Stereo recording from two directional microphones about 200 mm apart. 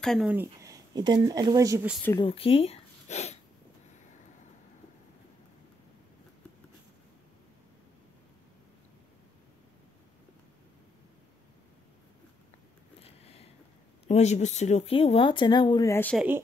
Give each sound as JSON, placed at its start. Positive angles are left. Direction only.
{"t": 0.0, "sound": "speech", "side_deg": 0}
{"t": 2.1, "sound": "speech", "side_deg": 25}
{"t": 13.0, "sound": "a sound", "side_deg": 30}
{"t": 14.0, "sound": "speech", "side_deg": 35}
{"t": 16.2, "sound": "speech", "side_deg": -10}